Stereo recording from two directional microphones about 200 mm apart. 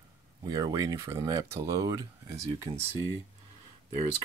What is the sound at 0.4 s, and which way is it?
Speech, 20° right (ahead or behind).